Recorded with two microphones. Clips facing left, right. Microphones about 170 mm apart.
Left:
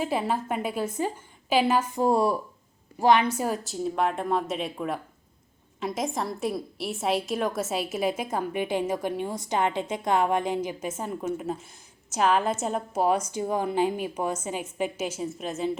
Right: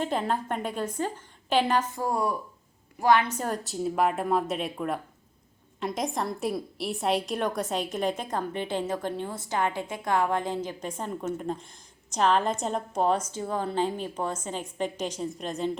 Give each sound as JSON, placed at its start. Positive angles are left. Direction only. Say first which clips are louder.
{"t": 0.0, "sound": "a woman's voice", "louder": "left 1 dB", "side_deg": 5}
{"t": 2.0, "sound": "speech", "louder": "left 5 dB", "side_deg": 25}
{"t": 3.2, "sound": "a woman's voice", "louder": "left 3 dB", "side_deg": 5}